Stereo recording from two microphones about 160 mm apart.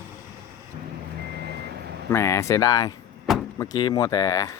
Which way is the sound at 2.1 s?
15° left (ahead or behind).